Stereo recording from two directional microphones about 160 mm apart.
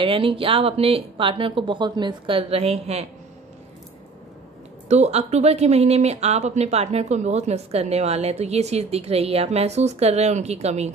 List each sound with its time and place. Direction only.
0.0 s speech: 35° right (ahead or behind)
4.8 s speech: 45° right (ahead or behind)